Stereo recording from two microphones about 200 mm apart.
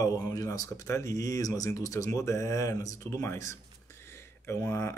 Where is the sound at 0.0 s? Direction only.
20° left (ahead or behind).